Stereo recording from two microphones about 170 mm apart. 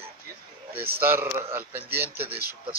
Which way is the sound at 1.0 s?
10° right (ahead or behind).